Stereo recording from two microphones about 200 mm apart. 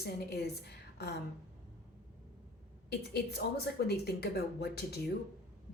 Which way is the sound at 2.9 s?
55° left (ahead or behind).